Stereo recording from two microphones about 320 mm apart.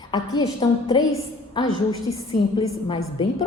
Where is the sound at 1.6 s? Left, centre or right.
Centre.